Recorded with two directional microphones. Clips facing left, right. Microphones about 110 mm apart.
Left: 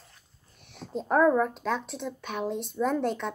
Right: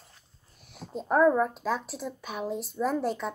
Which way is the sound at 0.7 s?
Centre (ahead or behind).